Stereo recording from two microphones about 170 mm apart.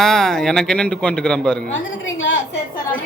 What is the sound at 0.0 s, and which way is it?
A man's voice, 5° left (ahead or behind).